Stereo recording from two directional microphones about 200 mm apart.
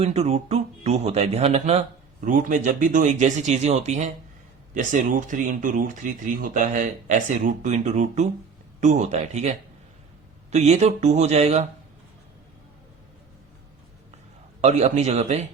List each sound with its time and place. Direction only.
0.0 s speech: 30° right (ahead or behind)
14.6 s speech: 35° right (ahead or behind)